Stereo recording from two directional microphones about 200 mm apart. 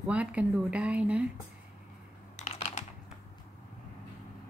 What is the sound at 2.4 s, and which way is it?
Computer keyboard, 35° left (ahead or behind).